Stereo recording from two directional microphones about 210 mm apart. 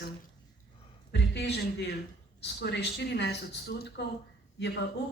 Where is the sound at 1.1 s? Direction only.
55° left (ahead or behind).